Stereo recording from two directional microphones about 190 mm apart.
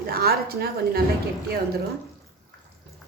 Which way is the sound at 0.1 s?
55° right (ahead or behind).